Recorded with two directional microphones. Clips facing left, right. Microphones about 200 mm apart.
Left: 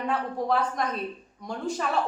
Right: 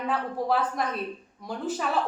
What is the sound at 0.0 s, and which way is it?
A woman's voice, 5° right (ahead or behind).